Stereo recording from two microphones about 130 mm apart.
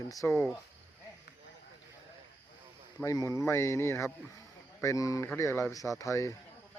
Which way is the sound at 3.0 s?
25° left (ahead or behind).